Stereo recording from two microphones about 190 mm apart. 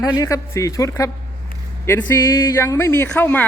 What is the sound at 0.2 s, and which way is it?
Speech, 15° left (ahead or behind).